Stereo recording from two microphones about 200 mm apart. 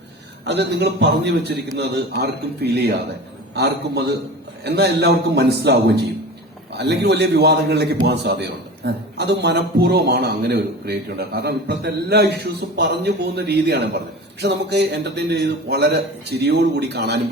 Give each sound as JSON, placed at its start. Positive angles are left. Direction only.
{"t": 0.4, "sound": "a man's voice", "side_deg": -60}